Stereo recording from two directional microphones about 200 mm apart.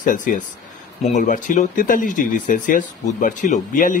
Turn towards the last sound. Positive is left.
turn(degrees=40)  # may be behind; listen again after turning